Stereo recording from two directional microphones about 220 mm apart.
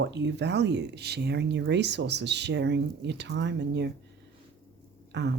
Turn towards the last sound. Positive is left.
turn(degrees=-50)  # may be behind; listen again after turning